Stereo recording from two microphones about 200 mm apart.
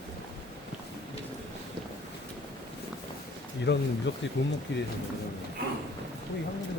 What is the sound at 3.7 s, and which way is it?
Speech, 60° left (ahead or behind).